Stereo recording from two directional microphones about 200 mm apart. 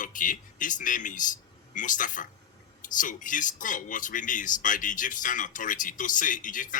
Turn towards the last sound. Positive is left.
turn(degrees=40)  # may be behind; listen again after turning